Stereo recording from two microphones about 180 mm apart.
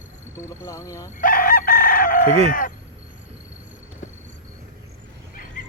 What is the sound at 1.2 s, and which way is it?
Chicken, 50° left (ahead or behind).